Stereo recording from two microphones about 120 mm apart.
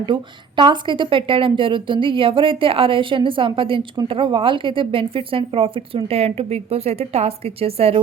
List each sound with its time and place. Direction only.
0.0 s a woman's voice: 40° right (ahead or behind)